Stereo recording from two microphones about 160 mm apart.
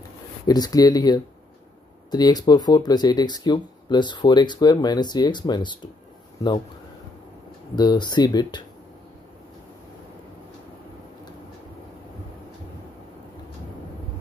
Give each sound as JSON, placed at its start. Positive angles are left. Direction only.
{"t": 0.5, "sound": "speech", "side_deg": 25}
{"t": 7.7, "sound": "speech", "side_deg": 25}